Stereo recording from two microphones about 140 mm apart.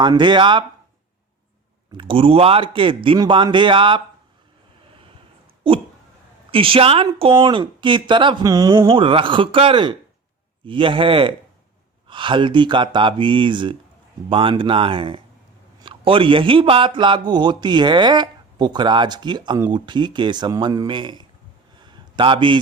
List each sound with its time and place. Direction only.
0.0 s a man's voice: 30° right (ahead or behind)
2.0 s a man's voice: 40° right (ahead or behind)
6.5 s a man's voice: 40° right (ahead or behind); by 8.9 s 25° right (ahead or behind)
8.9 s a man's voice: 40° right (ahead or behind)
21.8 s a sound: 30° right (ahead or behind)